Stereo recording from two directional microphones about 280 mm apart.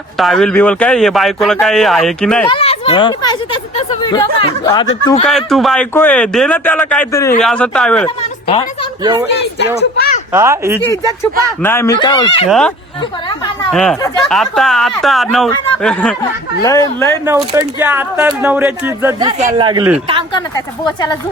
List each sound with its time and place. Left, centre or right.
0.2 s speech: centre
2.5 s speech: left
5.2 s speech: centre
8.0 s a woman's voice: centre
10.3 s speech: centre
10.8 s speech: centre
12.5 s speech: centre
13.0 s speech: centre
13.7 s speech: centre
17.2 s speech: centre
19.4 s speech: right
20.8 s speech: centre